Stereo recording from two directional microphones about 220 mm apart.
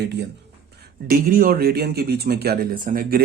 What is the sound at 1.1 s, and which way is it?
Speech, 40° right (ahead or behind).